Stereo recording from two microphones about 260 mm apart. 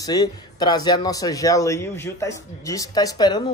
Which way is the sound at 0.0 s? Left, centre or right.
Centre.